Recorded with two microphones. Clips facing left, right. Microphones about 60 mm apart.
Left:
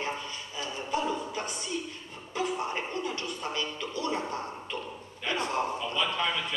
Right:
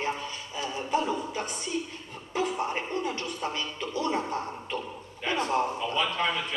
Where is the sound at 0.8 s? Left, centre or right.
Right.